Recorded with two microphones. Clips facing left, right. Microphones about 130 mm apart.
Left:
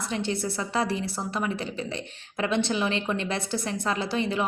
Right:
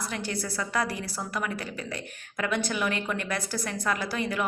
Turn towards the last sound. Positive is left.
turn(degrees=25)  # may be behind; listen again after turning